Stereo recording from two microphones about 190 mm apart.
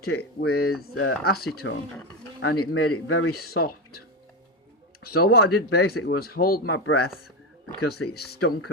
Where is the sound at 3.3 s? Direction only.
55° left (ahead or behind).